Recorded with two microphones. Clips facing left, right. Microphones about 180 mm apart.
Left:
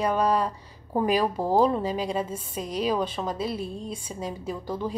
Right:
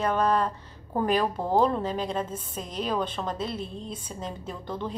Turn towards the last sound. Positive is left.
turn(degrees=10)  # may be behind; listen again after turning